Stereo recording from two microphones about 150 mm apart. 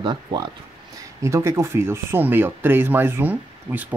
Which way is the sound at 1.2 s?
20° right (ahead or behind).